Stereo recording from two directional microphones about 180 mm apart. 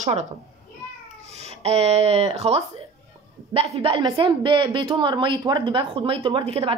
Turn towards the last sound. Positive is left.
turn(degrees=-30)  # may be behind; listen again after turning